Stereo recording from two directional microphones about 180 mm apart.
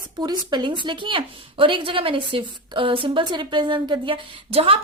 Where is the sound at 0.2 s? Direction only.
25° right (ahead or behind).